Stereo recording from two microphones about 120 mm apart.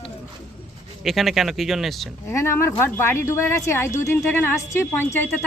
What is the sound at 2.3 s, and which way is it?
A woman's voice, 20° left (ahead or behind).